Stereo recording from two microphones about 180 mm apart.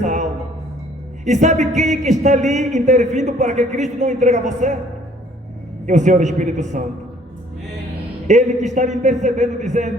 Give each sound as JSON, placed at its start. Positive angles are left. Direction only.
{"t": 0.0, "sound": "a sound", "side_deg": -40}
{"t": 1.2, "sound": "speech", "side_deg": -40}
{"t": 5.8, "sound": "speech", "side_deg": -40}
{"t": 8.3, "sound": "speech", "side_deg": -40}